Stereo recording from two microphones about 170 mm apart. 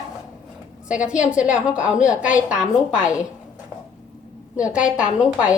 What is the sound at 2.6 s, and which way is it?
Speech, 50° left (ahead or behind).